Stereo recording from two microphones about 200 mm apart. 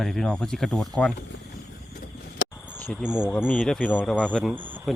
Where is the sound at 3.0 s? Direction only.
5° right (ahead or behind).